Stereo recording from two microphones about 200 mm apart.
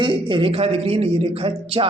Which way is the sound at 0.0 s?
25° right (ahead or behind).